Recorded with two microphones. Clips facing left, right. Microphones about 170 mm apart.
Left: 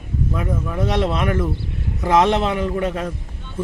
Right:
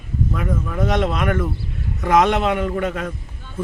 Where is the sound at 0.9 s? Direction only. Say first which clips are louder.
Even; 30° left (ahead or behind).